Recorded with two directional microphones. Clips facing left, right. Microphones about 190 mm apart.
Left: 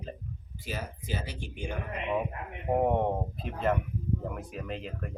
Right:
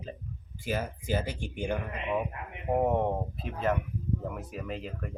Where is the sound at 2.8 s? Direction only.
Centre (ahead or behind).